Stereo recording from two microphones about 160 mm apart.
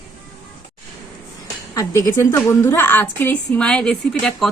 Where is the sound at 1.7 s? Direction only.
20° left (ahead or behind).